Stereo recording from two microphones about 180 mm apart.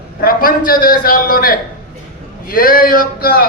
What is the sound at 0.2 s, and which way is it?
A man's voice, 50° left (ahead or behind).